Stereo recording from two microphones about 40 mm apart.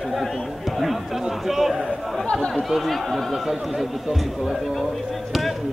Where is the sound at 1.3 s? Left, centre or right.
Centre.